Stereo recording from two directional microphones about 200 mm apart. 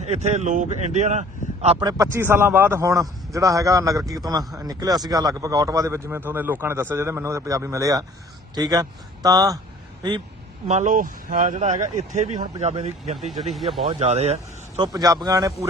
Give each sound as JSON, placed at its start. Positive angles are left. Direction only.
{"t": 0.0, "sound": "speech", "side_deg": -35}
{"t": 1.9, "sound": "speech", "side_deg": -15}
{"t": 10.7, "sound": "speech", "side_deg": -35}
{"t": 13.5, "sound": "speech", "side_deg": 0}
{"t": 13.8, "sound": "speech", "side_deg": -35}
{"t": 14.8, "sound": "speech", "side_deg": -20}